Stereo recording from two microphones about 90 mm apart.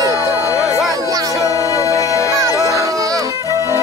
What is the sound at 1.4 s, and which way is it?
Music, 40° left (ahead or behind).